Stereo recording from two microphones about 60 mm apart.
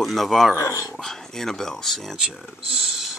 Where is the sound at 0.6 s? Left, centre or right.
Left.